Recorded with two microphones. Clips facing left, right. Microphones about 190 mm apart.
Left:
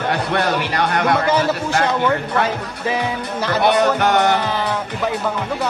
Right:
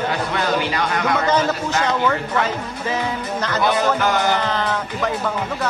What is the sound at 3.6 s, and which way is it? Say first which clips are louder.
Speech: left 3 dB; 65° left (ahead or behind).